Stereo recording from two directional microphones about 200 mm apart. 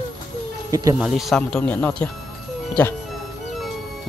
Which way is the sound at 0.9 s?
Centre (ahead or behind).